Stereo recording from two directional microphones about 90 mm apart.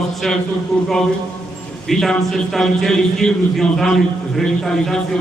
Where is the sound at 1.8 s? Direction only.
5° left (ahead or behind).